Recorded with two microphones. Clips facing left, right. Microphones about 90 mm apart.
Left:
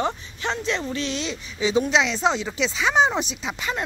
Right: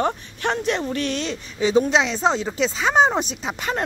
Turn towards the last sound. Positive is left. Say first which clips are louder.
# right 3 dB
turn(degrees=-45)  # may be behind; listen again after turning